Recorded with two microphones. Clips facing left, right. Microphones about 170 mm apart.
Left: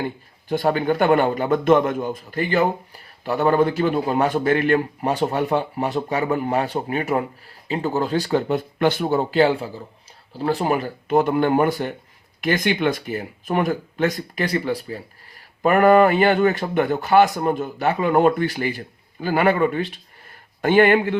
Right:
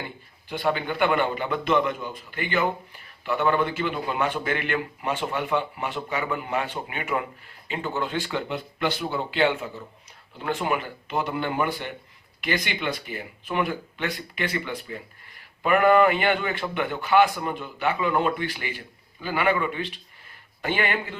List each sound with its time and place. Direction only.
0.0 s a man's voice: 45° left (ahead or behind)